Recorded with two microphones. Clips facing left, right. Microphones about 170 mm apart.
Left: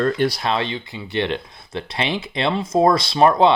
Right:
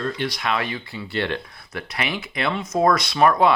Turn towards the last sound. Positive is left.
turn(degrees=25)  # may be behind; listen again after turning